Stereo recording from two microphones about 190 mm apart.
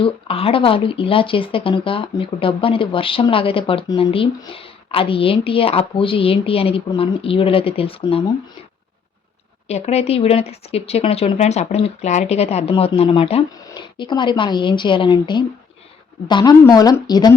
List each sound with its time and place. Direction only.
0.0 s speech: 30° left (ahead or behind)
9.6 s speech: 35° left (ahead or behind)